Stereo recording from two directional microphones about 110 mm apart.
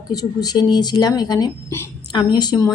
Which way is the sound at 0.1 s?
35° left (ahead or behind).